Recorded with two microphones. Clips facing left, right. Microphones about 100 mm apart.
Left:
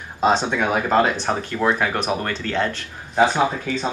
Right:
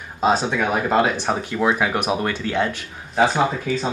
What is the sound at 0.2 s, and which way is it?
Speech, 5° right (ahead or behind).